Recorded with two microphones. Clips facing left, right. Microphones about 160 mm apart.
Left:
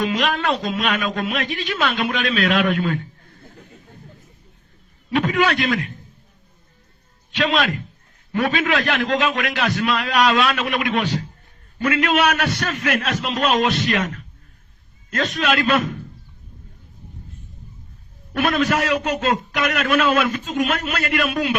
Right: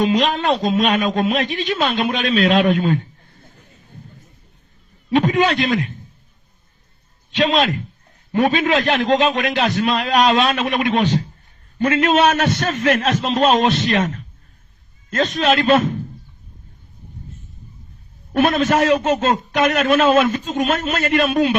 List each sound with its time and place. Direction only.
0.0 s a man's voice: 20° right (ahead or behind)
5.1 s a man's voice: 20° right (ahead or behind)
7.3 s a man's voice: 20° right (ahead or behind)
18.4 s a man's voice: 25° right (ahead or behind)